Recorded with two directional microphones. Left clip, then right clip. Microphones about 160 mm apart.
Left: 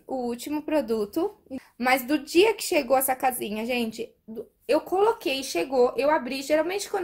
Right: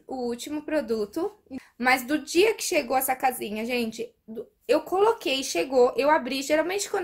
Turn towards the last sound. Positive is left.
turn(degrees=-10)  # may be behind; listen again after turning